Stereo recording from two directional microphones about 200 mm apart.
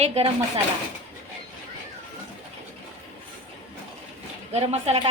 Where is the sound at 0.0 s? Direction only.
30° right (ahead or behind).